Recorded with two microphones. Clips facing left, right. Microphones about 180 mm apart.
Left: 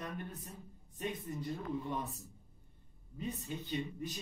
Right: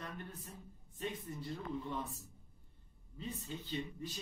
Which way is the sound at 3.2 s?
15° left (ahead or behind).